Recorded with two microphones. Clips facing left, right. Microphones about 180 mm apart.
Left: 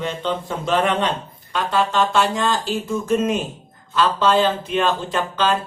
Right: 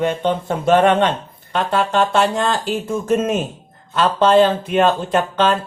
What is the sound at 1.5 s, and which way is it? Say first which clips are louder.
Music: right 2 dB; 55° right (ahead or behind).